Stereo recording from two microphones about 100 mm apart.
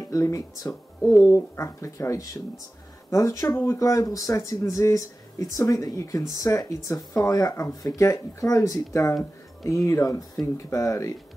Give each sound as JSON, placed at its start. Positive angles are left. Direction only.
{"t": 0.0, "sound": "speech", "side_deg": 30}